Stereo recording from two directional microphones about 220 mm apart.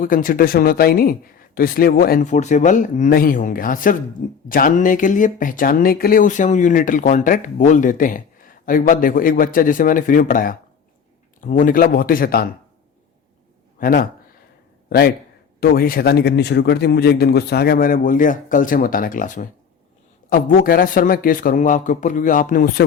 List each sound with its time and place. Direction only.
0.0 s speech: 40° left (ahead or behind)
13.7 s a man's voice: 40° left (ahead or behind)